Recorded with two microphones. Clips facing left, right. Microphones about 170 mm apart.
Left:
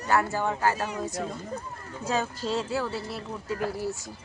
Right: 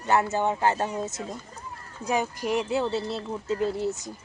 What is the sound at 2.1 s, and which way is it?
Speech, 15° right (ahead or behind).